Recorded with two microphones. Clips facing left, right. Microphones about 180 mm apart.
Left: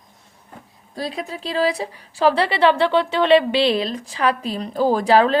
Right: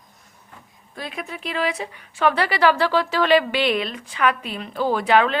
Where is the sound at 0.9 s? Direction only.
35° left (ahead or behind).